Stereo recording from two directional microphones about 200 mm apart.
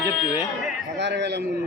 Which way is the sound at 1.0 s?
60° right (ahead or behind).